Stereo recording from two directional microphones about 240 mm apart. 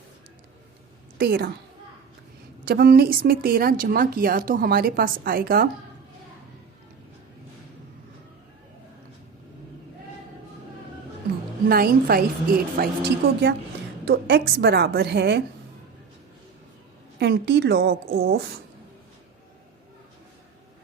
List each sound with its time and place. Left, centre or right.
1.2 s speech: right
2.6 s speech: right
11.7 s speech: right
14.0 s speech: right
17.2 s a woman's voice: right